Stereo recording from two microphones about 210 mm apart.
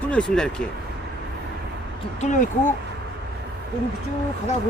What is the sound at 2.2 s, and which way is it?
Speech, 35° left (ahead or behind).